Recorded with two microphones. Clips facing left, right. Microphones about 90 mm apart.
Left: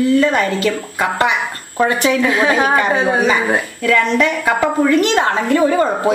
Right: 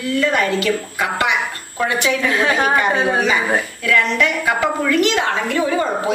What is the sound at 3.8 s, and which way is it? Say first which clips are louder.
A woman's voice: left 4 dB; 40° left (ahead or behind).